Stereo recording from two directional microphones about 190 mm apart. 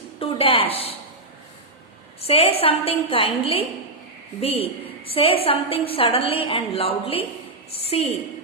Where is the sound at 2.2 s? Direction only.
30° left (ahead or behind).